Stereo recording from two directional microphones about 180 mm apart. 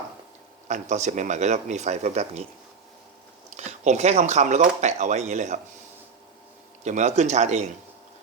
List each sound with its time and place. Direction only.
0.7 s speech: 40° right (ahead or behind)
3.6 s speech: 40° right (ahead or behind)
6.8 s speech: 40° right (ahead or behind)